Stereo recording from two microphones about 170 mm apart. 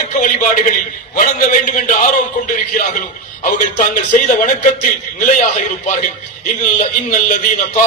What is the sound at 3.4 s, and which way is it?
A man's voice, 50° left (ahead or behind).